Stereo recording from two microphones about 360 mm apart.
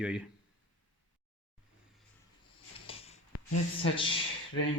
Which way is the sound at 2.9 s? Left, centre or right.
Centre.